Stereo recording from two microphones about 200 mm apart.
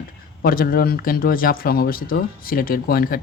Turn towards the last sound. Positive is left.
turn(degrees=45)  # may be behind; listen again after turning